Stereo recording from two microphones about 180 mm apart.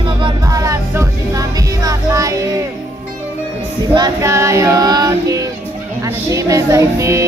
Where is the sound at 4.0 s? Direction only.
15° right (ahead or behind).